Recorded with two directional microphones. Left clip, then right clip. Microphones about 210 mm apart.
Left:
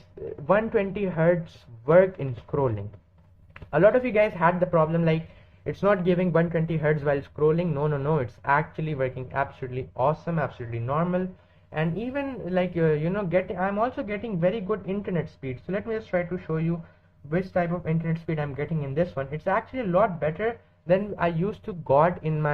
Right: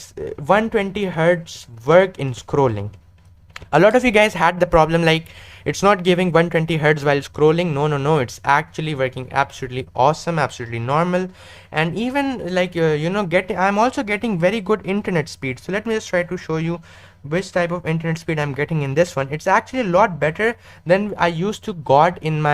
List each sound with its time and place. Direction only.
0.4 s speech: 30° right (ahead or behind)